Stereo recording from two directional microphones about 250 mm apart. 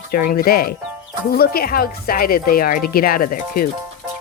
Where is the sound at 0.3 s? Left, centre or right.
Left.